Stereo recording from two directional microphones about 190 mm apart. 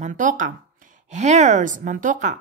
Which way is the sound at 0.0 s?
40° right (ahead or behind).